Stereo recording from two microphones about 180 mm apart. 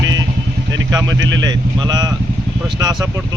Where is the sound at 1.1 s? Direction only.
90° right.